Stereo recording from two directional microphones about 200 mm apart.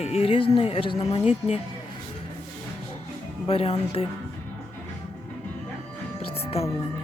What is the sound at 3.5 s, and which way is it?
Speech, 30° left (ahead or behind).